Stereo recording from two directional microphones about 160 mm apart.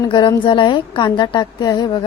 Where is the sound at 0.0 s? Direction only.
25° left (ahead or behind).